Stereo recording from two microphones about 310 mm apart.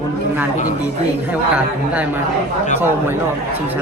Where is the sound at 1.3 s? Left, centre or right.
Centre.